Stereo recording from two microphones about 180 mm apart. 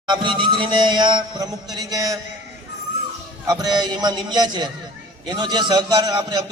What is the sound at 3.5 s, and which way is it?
A man's voice, 20° right (ahead or behind).